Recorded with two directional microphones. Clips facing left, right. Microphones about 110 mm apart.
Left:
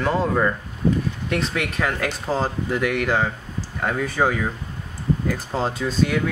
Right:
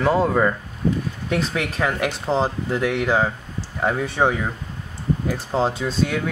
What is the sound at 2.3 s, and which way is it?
Speech, 25° right (ahead or behind).